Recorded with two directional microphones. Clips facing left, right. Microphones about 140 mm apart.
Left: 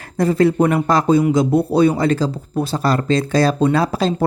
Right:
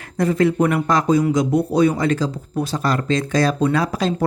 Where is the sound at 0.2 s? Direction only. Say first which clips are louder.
Left 2 dB; 35° left (ahead or behind).